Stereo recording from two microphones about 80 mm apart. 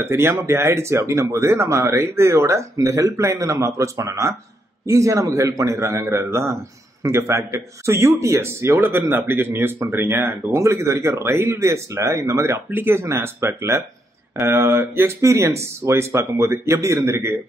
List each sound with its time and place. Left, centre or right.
0.0 s a man's voice: right